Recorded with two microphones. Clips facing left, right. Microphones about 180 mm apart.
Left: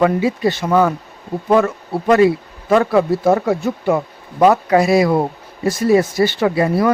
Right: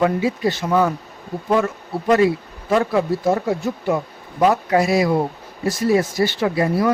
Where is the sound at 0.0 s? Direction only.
75° left (ahead or behind).